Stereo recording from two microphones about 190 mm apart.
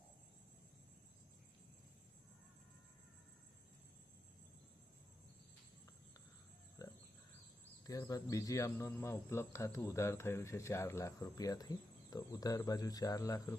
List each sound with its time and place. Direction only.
6.8 s pig: 20° left (ahead or behind)
7.9 s speech: 15° left (ahead or behind)